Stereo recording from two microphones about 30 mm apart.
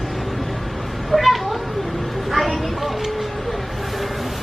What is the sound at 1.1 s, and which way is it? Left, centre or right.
Cat, centre.